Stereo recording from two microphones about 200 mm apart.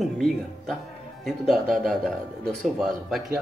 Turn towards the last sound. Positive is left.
turn(degrees=0)  # may be behind; listen again after turning